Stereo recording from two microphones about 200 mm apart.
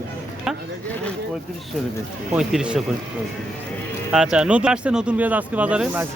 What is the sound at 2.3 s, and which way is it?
Speech, 5° right (ahead or behind).